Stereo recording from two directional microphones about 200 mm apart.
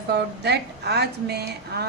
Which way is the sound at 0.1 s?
55° right (ahead or behind).